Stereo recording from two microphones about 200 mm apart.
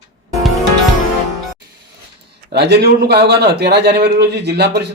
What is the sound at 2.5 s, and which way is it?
A man's voice, 55° right (ahead or behind).